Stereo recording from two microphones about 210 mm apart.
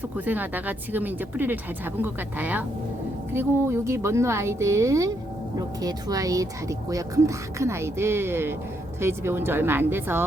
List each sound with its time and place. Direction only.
0.3 s speech: 10° right (ahead or behind)